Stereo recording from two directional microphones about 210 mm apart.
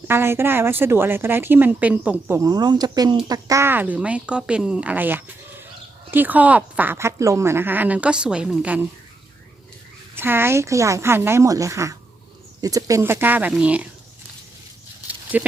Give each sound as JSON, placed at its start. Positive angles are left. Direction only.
{"t": 0.1, "sound": "speech", "side_deg": -10}
{"t": 10.2, "sound": "speech", "side_deg": -10}
{"t": 15.0, "sound": "a sound", "side_deg": -5}